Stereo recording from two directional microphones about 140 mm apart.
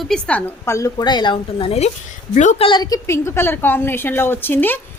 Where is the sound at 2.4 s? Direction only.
60° left (ahead or behind).